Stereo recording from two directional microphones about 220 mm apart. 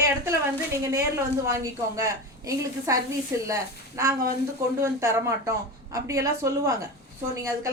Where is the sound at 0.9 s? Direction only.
15° right (ahead or behind).